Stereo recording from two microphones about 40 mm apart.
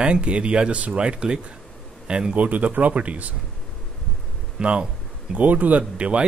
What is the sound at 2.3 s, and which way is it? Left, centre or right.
Speech, right.